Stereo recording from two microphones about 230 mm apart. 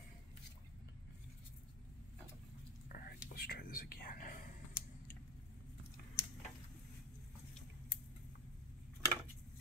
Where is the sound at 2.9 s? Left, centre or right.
Left.